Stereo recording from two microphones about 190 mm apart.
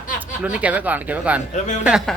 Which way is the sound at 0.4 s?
5° right (ahead or behind).